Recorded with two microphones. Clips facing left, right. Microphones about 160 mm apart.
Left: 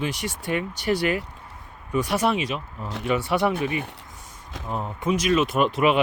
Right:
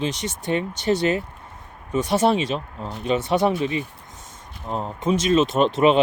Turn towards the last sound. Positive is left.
turn(degrees=-25)  # may be behind; listen again after turning